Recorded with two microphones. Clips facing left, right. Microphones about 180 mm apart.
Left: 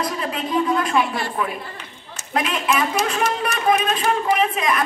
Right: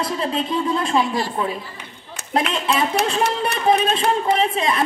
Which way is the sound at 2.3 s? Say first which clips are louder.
Right 1 dB; 30° right (ahead or behind).